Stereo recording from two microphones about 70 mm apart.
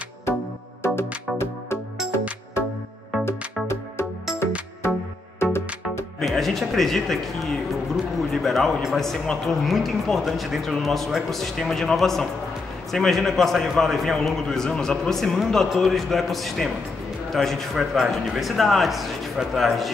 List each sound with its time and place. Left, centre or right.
0.8 s music: left
5.4 s music: left
6.2 s speech: centre